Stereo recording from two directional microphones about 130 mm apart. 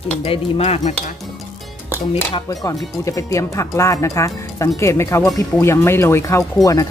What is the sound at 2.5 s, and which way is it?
Speech, 25° left (ahead or behind).